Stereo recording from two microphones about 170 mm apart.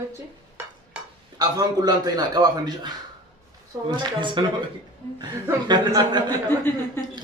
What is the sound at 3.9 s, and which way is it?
A man's voice, 30° right (ahead or behind).